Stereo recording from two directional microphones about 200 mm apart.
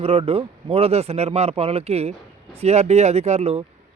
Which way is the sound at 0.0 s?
30° right (ahead or behind).